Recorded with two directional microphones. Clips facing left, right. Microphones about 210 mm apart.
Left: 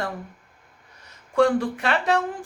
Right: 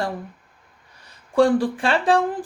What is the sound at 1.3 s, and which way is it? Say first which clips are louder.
Speech: right 3 dB; 30° right (ahead or behind).